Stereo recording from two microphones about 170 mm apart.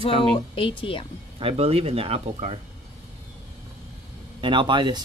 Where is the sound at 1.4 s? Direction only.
35° right (ahead or behind).